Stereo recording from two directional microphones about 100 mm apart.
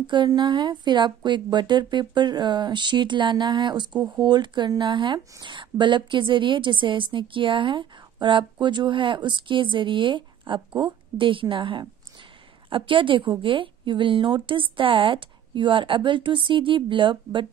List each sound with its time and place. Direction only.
0.0 s a woman's voice: 50° right (ahead or behind)